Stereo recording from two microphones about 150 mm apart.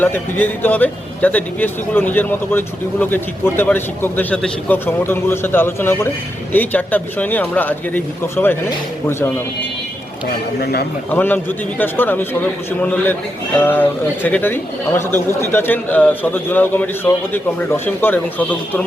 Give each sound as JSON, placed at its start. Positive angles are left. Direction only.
{"t": 0.0, "sound": "speech", "side_deg": 15}
{"t": 10.6, "sound": "speech", "side_deg": 90}
{"t": 11.1, "sound": "speech", "side_deg": 15}